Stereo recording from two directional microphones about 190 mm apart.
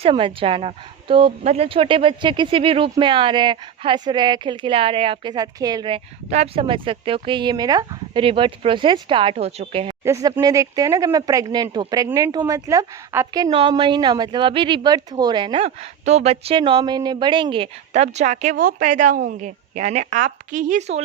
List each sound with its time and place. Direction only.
0.0 s speech: 30° right (ahead or behind)
10.0 s a woman's voice: 15° right (ahead or behind); by 21.0 s 35° right (ahead or behind)